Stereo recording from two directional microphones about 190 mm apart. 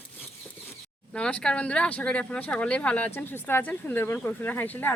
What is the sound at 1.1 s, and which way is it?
Speech, 5° left (ahead or behind).